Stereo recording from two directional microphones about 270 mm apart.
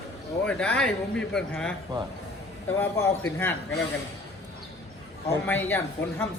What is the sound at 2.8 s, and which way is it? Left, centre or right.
Speech, centre.